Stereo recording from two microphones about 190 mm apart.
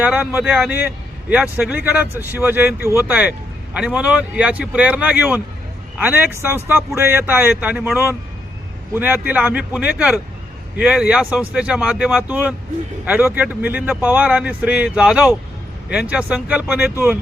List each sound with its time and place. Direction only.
0.0 s a man's voice: 5° right (ahead or behind)